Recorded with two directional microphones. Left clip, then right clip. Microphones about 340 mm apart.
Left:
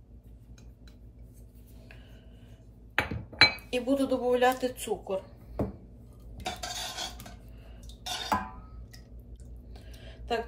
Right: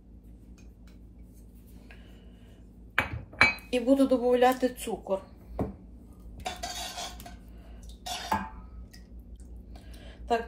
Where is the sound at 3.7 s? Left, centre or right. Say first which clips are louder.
Right 4 dB; right.